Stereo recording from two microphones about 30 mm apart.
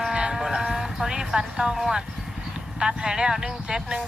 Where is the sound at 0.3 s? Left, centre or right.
Centre.